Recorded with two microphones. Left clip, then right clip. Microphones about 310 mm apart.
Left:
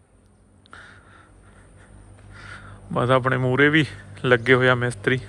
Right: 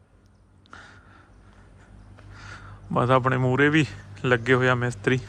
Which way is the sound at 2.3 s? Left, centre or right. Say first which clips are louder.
Left 3 dB; centre.